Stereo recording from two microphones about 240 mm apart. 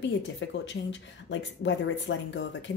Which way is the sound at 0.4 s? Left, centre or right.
Left.